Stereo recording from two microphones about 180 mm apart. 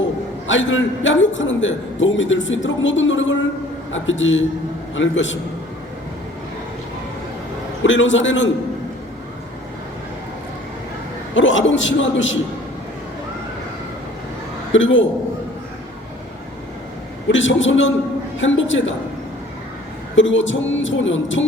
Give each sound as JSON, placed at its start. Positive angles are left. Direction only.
{"t": 0.4, "sound": "a man's voice", "side_deg": 90}
{"t": 7.9, "sound": "a man's voice", "side_deg": 90}
{"t": 11.3, "sound": "a man's voice", "side_deg": 90}
{"t": 14.7, "sound": "a man's voice", "side_deg": 90}
{"t": 17.2, "sound": "a man's voice", "side_deg": 90}
{"t": 20.1, "sound": "a man's voice", "side_deg": 90}